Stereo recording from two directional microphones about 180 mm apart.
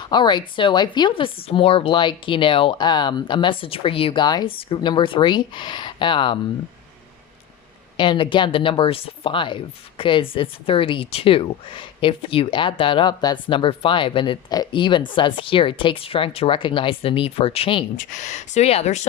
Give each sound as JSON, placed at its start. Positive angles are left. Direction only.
{"t": 0.0, "sound": "a woman's voice", "side_deg": 25}
{"t": 7.9, "sound": "a woman's voice", "side_deg": 25}
{"t": 17.9, "sound": "speech", "side_deg": 45}